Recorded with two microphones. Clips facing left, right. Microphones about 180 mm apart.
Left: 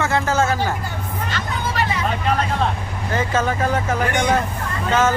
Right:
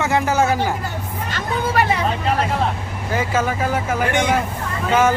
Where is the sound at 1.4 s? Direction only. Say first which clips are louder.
Right 5 dB; 55° right (ahead or behind).